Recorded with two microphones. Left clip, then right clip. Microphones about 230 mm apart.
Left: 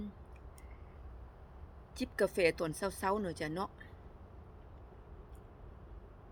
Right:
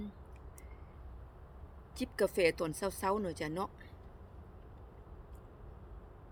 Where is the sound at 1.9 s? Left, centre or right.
Centre.